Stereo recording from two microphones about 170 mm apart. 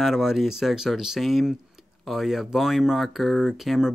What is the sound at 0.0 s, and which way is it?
Speech, centre (ahead or behind).